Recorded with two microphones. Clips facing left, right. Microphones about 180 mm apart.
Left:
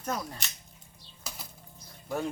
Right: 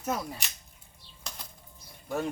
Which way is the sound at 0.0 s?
10° right (ahead or behind).